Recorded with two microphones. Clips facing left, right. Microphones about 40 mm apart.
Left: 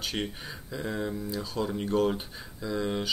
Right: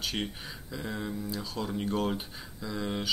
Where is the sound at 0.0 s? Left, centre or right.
Centre.